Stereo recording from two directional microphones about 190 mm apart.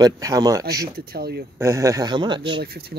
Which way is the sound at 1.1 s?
55° right (ahead or behind).